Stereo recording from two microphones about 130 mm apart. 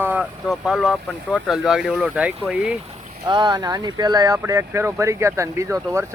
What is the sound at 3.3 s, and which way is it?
Speech, 35° right (ahead or behind).